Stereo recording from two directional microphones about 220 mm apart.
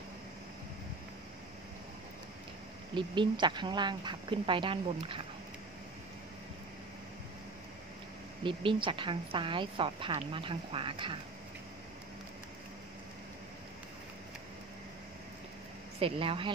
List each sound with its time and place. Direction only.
2.9 s a woman's voice: 20° right (ahead or behind)
8.5 s a woman's voice: 20° right (ahead or behind)
16.0 s a woman's voice: 25° right (ahead or behind)